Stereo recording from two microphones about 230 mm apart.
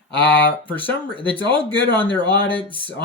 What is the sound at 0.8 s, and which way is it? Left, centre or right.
Speech, right.